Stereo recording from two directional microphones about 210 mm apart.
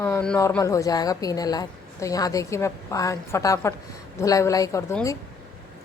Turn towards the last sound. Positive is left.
turn(degrees=15)  # may be behind; listen again after turning